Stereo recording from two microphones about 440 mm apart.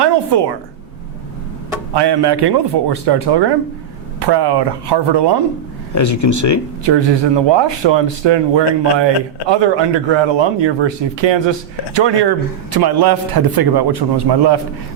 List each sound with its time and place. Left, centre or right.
0.0 s a woman's voice: right
1.9 s a man's voice: right
5.9 s speech: left
6.8 s speech: right
12.7 s a man's voice: right